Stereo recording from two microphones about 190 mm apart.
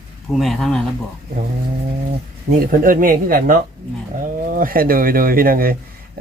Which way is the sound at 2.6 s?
45° right (ahead or behind).